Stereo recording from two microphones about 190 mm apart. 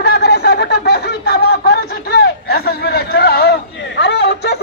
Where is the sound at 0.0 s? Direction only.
55° left (ahead or behind).